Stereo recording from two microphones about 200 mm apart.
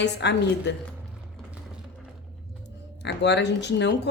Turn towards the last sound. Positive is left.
turn(degrees=60)  # may be behind; listen again after turning